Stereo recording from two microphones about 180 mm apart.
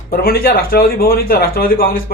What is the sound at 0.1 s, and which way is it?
Speech, 55° left (ahead or behind).